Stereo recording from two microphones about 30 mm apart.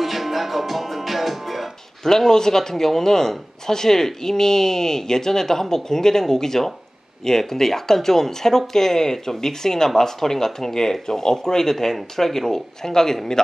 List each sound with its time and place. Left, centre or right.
0.0 s music: centre
2.0 s speech: centre
11.7 s speech: centre